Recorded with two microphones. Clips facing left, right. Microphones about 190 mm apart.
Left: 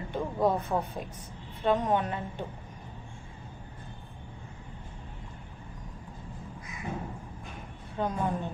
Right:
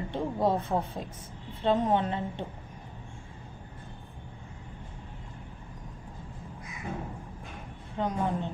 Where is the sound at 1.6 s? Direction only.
20° right (ahead or behind).